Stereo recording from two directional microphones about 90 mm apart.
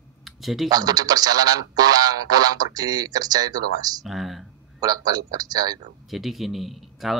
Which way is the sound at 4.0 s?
Centre (ahead or behind).